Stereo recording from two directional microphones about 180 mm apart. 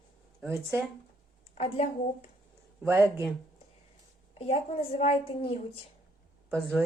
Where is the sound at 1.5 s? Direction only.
35° left (ahead or behind).